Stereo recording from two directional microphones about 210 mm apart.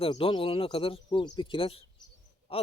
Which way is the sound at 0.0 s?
25° left (ahead or behind).